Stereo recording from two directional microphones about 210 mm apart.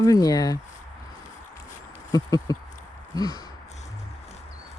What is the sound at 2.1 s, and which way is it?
Speech, 15° left (ahead or behind).